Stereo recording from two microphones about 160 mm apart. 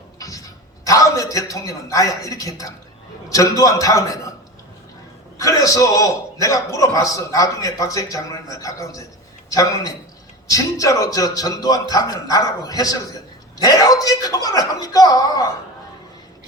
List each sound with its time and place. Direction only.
0.2 s a sound: 20° left (ahead or behind)
0.9 s a man's voice: 20° left (ahead or behind)
5.4 s a man's voice: 20° left (ahead or behind)